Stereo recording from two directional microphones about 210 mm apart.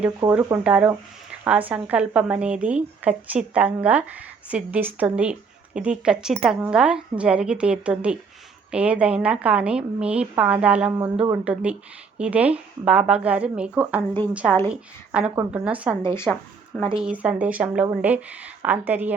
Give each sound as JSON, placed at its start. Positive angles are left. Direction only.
{"t": 0.2, "sound": "speech", "side_deg": -15}
{"t": 15.1, "sound": "speech", "side_deg": -5}
{"t": 16.0, "sound": "speech", "side_deg": 10}
{"t": 16.3, "sound": "speech", "side_deg": 0}